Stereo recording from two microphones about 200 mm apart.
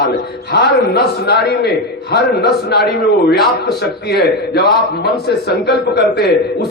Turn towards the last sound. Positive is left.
turn(degrees=55)  # may be behind; listen again after turning